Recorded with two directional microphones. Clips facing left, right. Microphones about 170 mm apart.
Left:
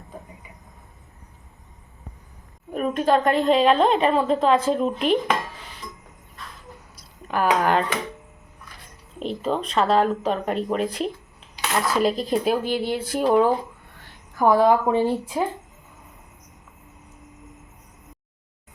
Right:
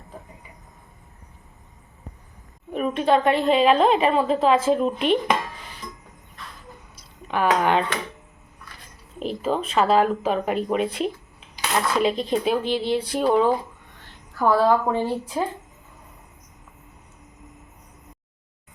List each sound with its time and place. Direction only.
3.0 s a woman's voice: centre (ahead or behind)
7.3 s a woman's voice: centre (ahead or behind)
9.1 s a woman's voice: 5° right (ahead or behind)
12.6 s speech: 50° left (ahead or behind)
13.0 s a woman's voice: centre (ahead or behind)
14.3 s a woman's voice: 15° left (ahead or behind)